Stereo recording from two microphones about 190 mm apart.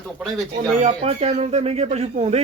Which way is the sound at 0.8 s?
35° right (ahead or behind).